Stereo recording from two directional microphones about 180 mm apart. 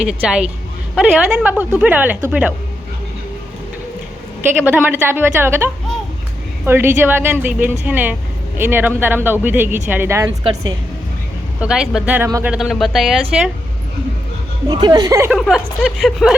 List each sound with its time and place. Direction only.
0.1 s speech: 5° right (ahead or behind)
4.6 s speech: 10° right (ahead or behind)
11.6 s speech: 5° right (ahead or behind)
14.7 s speech: 20° right (ahead or behind)
15.3 s speech: centre (ahead or behind)